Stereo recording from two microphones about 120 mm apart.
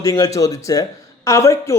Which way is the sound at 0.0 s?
30° left (ahead or behind).